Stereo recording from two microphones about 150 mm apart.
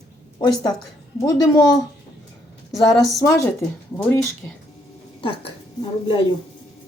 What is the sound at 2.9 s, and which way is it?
Speech, centre (ahead or behind).